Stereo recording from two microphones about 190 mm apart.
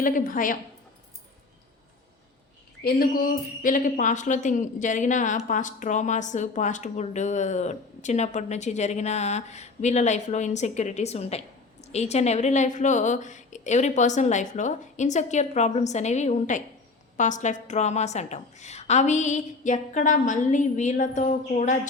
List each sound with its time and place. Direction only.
0.0 s a woman's voice: 45° left (ahead or behind)
2.8 s a woman's voice: 50° left (ahead or behind)